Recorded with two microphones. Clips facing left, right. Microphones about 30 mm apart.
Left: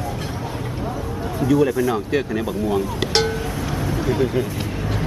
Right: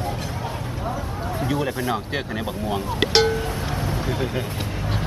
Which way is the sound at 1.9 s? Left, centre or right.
Centre.